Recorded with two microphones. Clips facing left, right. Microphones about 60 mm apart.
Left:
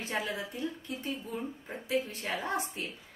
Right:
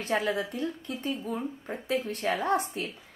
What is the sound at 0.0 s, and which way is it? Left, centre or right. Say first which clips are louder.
A woman's voice: right 6 dB; right.